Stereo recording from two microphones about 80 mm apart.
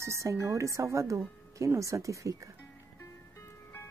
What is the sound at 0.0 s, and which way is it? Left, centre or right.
Speech, right.